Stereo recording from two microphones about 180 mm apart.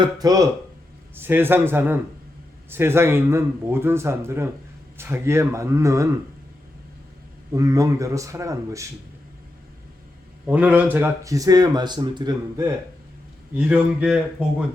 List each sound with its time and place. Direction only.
0.0 s speech: 20° right (ahead or behind)
7.5 s speech: 20° right (ahead or behind)
10.4 s speech: 5° right (ahead or behind)
13.6 s speech: 5° right (ahead or behind)